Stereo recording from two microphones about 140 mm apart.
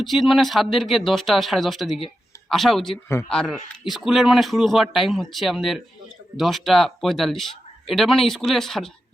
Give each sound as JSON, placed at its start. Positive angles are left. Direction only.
{"t": 0.0, "sound": "speech", "side_deg": 0}